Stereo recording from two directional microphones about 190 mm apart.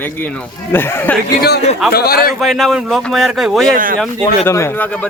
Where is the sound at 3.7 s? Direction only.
45° right (ahead or behind).